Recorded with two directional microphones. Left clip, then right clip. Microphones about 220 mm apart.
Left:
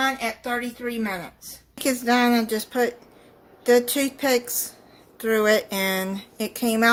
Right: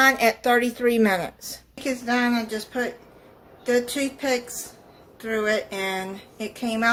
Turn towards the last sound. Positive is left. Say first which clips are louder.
# left 3 dB
turn(degrees=45)  # may be behind; listen again after turning